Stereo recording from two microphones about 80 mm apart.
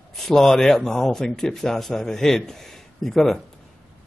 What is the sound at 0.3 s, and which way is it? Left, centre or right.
Speech, centre.